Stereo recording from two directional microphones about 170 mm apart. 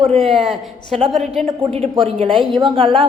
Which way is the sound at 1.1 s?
Centre (ahead or behind).